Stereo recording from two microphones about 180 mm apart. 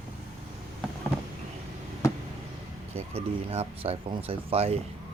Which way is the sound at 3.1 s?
35° right (ahead or behind).